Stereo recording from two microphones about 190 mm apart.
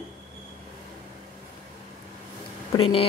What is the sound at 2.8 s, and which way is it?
Speech, 30° left (ahead or behind).